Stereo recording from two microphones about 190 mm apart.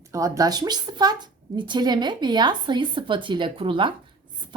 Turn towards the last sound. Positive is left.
turn(degrees=-25)  # may be behind; listen again after turning